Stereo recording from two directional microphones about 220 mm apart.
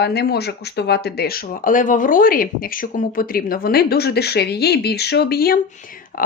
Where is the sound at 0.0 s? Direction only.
50° left (ahead or behind).